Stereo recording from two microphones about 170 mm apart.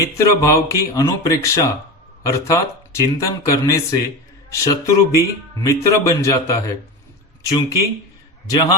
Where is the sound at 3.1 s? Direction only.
20° left (ahead or behind).